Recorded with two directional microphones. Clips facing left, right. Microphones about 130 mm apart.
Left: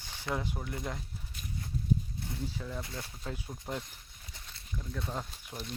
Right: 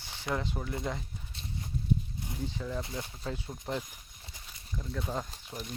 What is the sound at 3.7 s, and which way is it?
Speech, 5° left (ahead or behind).